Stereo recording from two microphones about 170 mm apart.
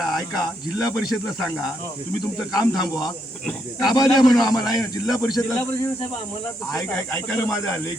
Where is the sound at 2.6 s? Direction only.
25° left (ahead or behind).